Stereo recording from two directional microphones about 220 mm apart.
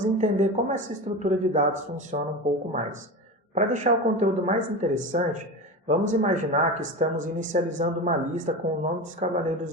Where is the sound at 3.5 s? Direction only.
35° right (ahead or behind).